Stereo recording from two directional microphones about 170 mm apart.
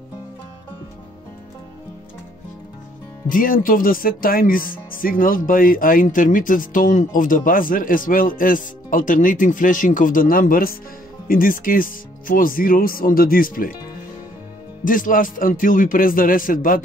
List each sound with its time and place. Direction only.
3.3 s speech: 55° left (ahead or behind)
14.9 s speech: 55° left (ahead or behind)